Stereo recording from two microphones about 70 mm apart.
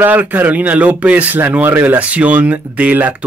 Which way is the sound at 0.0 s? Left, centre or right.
Right.